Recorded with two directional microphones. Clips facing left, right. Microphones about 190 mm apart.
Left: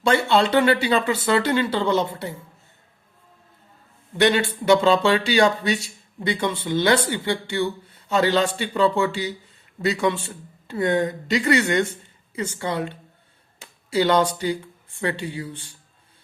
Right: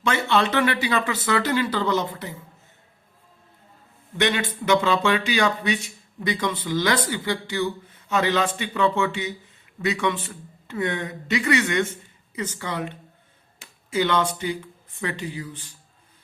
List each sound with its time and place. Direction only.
0.0 s speech: 35° left (ahead or behind)
4.2 s speech: 30° left (ahead or behind)
13.9 s speech: 35° left (ahead or behind)